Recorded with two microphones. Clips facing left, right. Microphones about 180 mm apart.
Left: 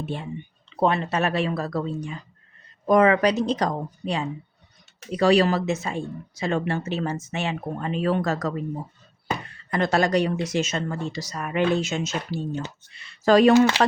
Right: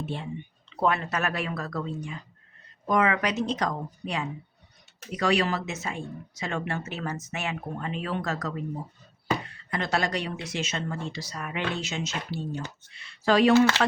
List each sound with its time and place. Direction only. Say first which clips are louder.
0.8 s speech: left 4 dB; 25° left (ahead or behind)
9.6 s speech: left 7 dB; 50° left (ahead or behind)
12.5 s speech: left 4 dB; 20° left (ahead or behind)
13.0 s speech: left 5 dB; 40° left (ahead or behind)